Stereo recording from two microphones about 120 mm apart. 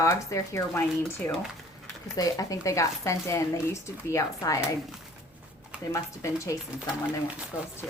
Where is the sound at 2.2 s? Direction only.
30° left (ahead or behind).